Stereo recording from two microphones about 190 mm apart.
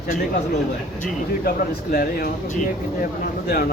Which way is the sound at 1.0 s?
50° left (ahead or behind).